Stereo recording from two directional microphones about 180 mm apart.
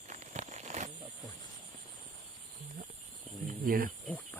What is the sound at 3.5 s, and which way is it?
Cricket, 50° right (ahead or behind).